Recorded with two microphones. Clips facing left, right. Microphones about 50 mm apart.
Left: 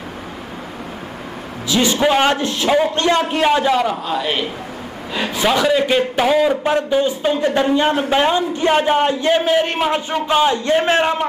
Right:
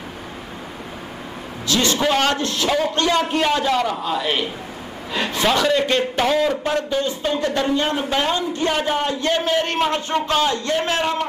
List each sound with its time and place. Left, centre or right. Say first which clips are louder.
1.7 s a man's voice: left 3 dB; centre